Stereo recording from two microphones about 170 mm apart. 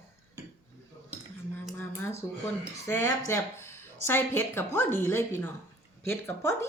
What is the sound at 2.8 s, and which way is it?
A woman's voice, 15° left (ahead or behind).